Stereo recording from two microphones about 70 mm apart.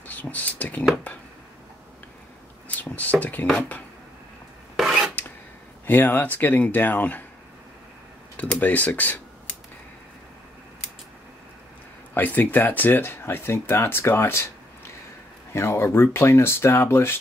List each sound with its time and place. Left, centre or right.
0.0 s speech: left
2.8 s speech: left
4.7 s filing: centre
5.9 s speech: left
8.4 s speech: left
12.1 s speech: left
15.5 s speech: left